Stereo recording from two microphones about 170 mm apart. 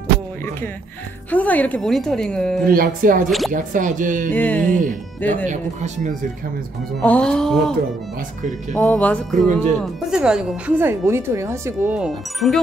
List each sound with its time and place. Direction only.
1.3 s speech: 10° left (ahead or behind)
2.7 s speech: 55° right (ahead or behind)
3.3 s speech: centre (ahead or behind)
3.5 s speech: 50° right (ahead or behind)
4.3 s speech: 10° left (ahead or behind)
7.0 s speech: 5° left (ahead or behind)
8.7 s speech: 10° left (ahead or behind); by 11.9 s 15° right (ahead or behind)
11.9 s speech: centre (ahead or behind)